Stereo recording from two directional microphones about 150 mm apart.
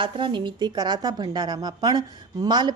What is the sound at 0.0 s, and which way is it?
A woman's voice, 35° right (ahead or behind).